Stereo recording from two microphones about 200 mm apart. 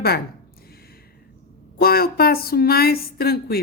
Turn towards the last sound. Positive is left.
turn(degrees=50)  # may be behind; listen again after turning